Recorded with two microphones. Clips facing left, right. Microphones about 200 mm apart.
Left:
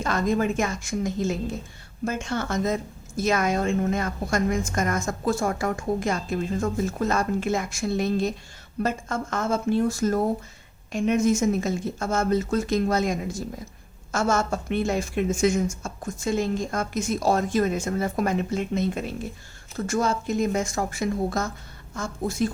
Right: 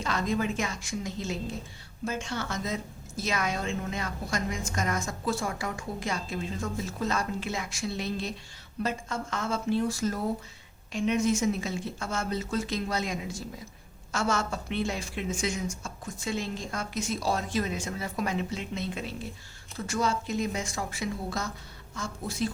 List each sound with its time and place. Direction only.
0.0 s a woman's voice: 50° left (ahead or behind)